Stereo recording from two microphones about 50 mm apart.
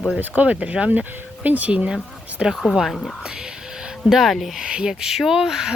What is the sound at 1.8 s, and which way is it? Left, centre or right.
Speech, centre.